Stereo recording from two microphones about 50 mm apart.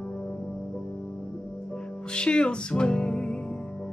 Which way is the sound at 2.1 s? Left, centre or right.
Centre.